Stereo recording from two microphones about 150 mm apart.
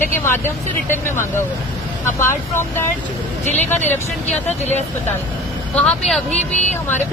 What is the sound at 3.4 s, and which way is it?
Speech, 50° left (ahead or behind).